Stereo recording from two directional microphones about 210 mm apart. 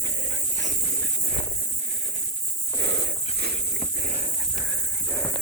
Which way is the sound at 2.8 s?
55° right (ahead or behind).